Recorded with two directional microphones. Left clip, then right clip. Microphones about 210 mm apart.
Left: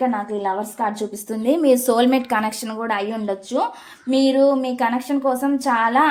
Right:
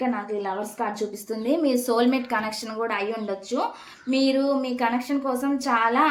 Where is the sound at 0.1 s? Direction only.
40° left (ahead or behind).